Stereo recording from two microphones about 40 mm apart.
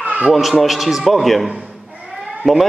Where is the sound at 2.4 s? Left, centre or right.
Centre.